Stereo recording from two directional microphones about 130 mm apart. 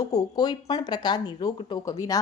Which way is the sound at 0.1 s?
30° left (ahead or behind).